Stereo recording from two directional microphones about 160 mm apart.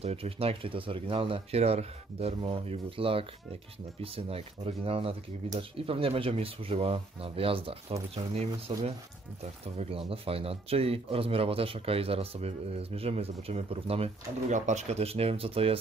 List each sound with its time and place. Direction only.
0.0 s speech: 40° right (ahead or behind)